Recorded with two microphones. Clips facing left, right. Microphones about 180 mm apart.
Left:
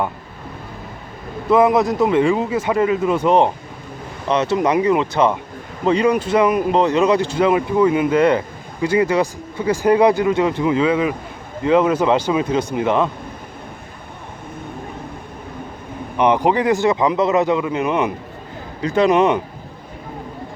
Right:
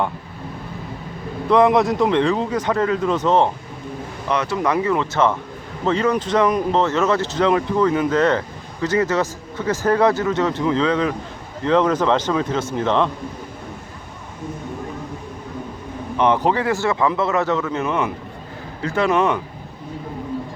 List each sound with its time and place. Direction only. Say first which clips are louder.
1.5 s speech: left 1 dB; 5° left (ahead or behind)
16.1 s speech: left 2 dB; 15° left (ahead or behind)